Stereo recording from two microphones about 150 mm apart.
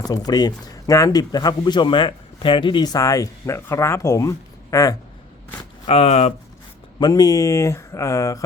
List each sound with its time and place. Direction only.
0.0 s speech: 25° left (ahead or behind)
5.8 s speech: 45° left (ahead or behind)
7.0 s speech: 25° left (ahead or behind)